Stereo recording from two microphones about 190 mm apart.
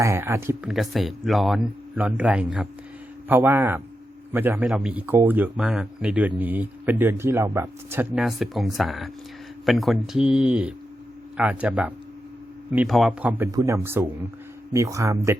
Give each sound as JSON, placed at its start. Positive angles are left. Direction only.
{"t": 0.0, "sound": "speech", "side_deg": -15}
{"t": 0.7, "sound": "speech", "side_deg": 0}